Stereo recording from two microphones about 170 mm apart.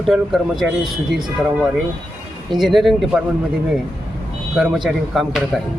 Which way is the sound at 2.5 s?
Centre (ahead or behind).